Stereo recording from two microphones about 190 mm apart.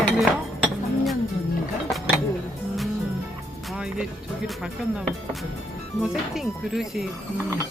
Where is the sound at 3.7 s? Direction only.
5° right (ahead or behind).